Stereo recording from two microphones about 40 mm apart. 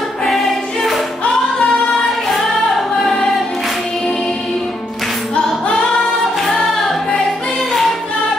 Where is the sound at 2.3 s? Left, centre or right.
Centre.